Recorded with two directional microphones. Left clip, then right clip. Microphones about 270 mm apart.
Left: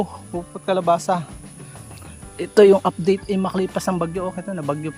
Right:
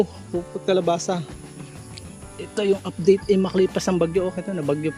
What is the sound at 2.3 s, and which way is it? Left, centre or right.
Speech, centre.